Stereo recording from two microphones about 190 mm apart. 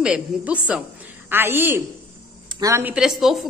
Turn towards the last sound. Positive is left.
turn(degrees=0)  # may be behind; listen again after turning